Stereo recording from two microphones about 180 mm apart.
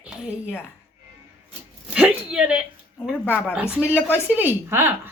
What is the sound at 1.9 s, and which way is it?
Speech, 5° right (ahead or behind).